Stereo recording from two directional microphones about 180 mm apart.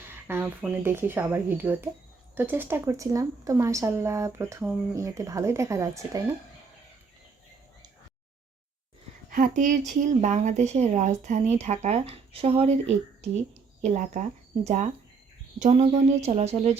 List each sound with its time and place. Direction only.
0.0 s a woman's voice: 10° right (ahead or behind)
9.3 s speech: 50° right (ahead or behind)